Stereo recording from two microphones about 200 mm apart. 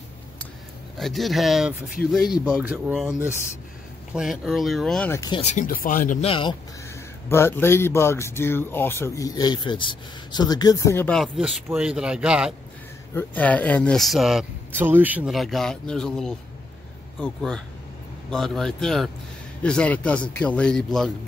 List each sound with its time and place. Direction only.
0.9 s speech: centre (ahead or behind)
5.4 s speech: 35° left (ahead or behind)
6.2 s speech: 25° left (ahead or behind)
7.2 s speech: 10° left (ahead or behind); by 12.5 s 5° right (ahead or behind)
13.1 s speech: 10° left (ahead or behind)